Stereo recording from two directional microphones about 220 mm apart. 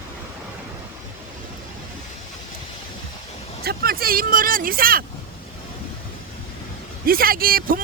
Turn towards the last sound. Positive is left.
turn(degrees=-40)  # may be behind; listen again after turning